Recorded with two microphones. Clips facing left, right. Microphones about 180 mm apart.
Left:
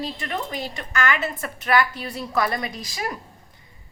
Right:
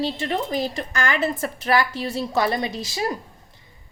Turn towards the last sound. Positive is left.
turn(degrees=-30)  # may be behind; listen again after turning